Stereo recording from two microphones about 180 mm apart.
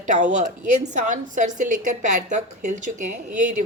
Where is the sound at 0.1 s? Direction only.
40° right (ahead or behind).